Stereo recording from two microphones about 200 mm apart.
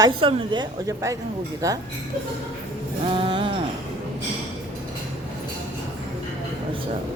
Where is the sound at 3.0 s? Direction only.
25° right (ahead or behind).